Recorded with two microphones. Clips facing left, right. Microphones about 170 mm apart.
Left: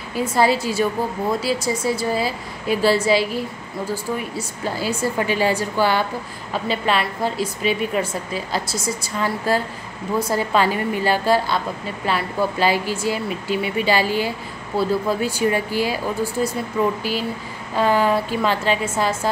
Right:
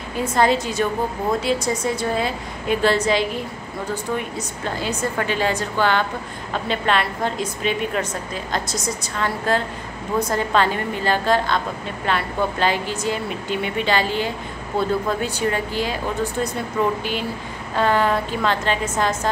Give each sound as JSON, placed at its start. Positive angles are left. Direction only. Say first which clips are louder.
{"t": 0.1, "sound": "a woman's voice", "louder": "even", "side_deg": 5}
{"t": 17.7, "sound": "speech", "louder": "left 1 dB", "side_deg": 5}